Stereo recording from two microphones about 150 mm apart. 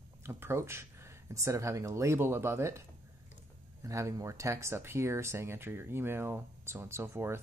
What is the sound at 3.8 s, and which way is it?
Speech, 20° right (ahead or behind).